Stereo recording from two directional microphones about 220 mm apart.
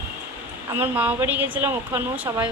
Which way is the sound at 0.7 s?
10° right (ahead or behind).